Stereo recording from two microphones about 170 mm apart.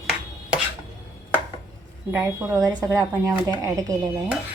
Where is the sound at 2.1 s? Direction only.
15° right (ahead or behind).